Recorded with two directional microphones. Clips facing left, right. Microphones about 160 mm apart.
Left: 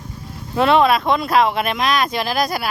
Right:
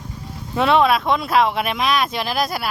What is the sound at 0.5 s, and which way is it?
Speech, centre (ahead or behind).